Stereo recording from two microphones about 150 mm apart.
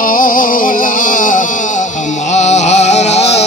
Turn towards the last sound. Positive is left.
turn(degrees=45)  # may be behind; listen again after turning